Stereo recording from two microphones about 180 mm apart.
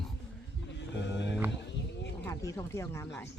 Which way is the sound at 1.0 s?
80° left.